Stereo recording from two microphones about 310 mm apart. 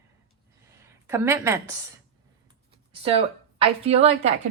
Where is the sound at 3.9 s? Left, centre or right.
Centre.